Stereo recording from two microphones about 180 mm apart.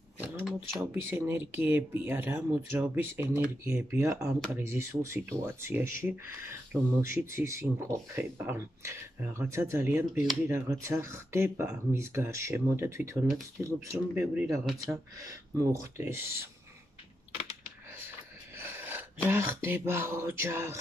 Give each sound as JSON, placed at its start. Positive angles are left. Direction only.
{"t": 0.7, "sound": "speech", "side_deg": -15}
{"t": 18.6, "sound": "gasp", "side_deg": -10}
{"t": 19.2, "sound": "speech", "side_deg": -15}